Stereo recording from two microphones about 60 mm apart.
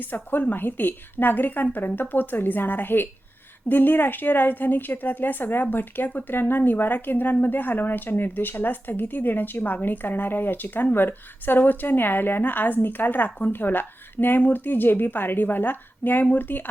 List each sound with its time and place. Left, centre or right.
0.0 s speech: left